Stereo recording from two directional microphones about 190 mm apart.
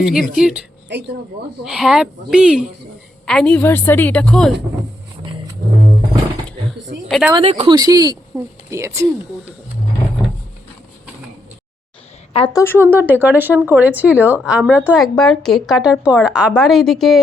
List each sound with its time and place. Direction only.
0.1 s speech: 5° right (ahead or behind)
1.6 s a woman's voice: 5° right (ahead or behind)
7.1 s speech: centre (ahead or behind)
7.3 s speech: 30° right (ahead or behind)
7.8 s speech: 20° right (ahead or behind)
8.3 s speech: 5° right (ahead or behind)
8.7 s speech: 15° right (ahead or behind)
12.3 s a woman's voice: 30° left (ahead or behind)
12.7 s speech: 10° right (ahead or behind)